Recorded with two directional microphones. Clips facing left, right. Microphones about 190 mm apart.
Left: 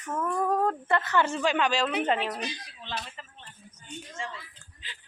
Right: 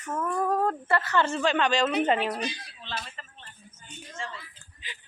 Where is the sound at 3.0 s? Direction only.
15° left (ahead or behind).